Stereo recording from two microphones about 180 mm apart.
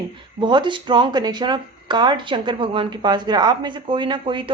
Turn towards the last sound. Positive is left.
turn(degrees=-25)  # may be behind; listen again after turning